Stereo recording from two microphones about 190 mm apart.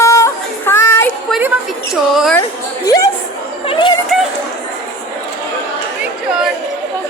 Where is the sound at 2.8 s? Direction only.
15° left (ahead or behind).